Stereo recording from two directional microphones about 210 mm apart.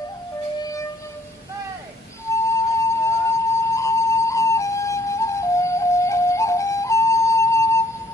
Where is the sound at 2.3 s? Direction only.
15° left (ahead or behind).